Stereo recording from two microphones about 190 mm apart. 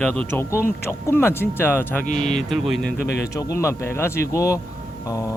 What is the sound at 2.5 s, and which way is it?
Speech, centre (ahead or behind).